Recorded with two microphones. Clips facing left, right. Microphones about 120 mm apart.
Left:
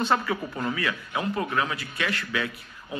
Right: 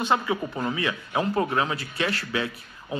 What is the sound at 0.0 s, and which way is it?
A man's voice, 15° right (ahead or behind).